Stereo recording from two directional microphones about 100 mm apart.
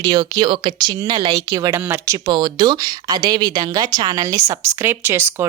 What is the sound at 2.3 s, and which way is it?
Speech, 45° right (ahead or behind).